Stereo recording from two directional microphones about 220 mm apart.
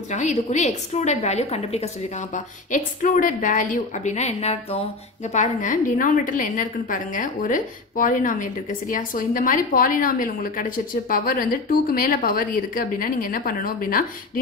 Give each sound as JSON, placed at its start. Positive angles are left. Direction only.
{"t": 0.1, "sound": "a woman's voice", "side_deg": 30}